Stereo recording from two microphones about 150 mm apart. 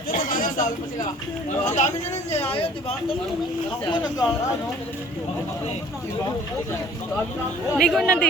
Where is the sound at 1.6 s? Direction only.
50° left (ahead or behind).